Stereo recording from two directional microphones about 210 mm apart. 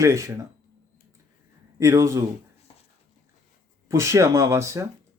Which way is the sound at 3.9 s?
15° right (ahead or behind).